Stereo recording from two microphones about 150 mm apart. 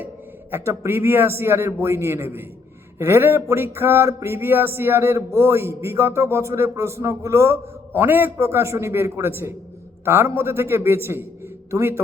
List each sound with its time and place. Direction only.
0.5 s speech: 20° right (ahead or behind)